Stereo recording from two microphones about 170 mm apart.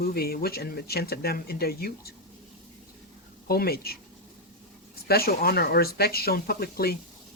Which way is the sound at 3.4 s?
65° left (ahead or behind).